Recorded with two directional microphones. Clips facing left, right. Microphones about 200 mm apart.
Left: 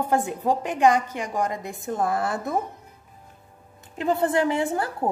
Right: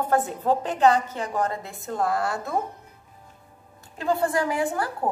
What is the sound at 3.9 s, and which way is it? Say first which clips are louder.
Speech: left 2 dB; 20° left (ahead or behind).